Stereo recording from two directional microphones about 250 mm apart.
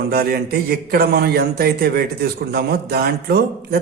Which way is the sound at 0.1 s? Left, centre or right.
Right.